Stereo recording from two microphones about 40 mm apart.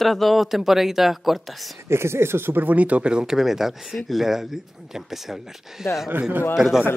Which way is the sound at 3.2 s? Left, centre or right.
Centre.